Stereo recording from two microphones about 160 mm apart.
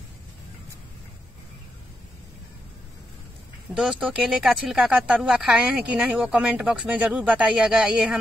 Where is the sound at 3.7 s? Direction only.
5° right (ahead or behind).